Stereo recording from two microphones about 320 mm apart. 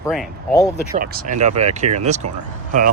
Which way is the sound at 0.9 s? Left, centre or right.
Right.